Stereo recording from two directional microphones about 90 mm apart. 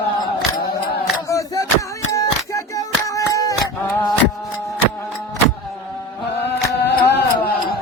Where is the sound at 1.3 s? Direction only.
35° left (ahead or behind).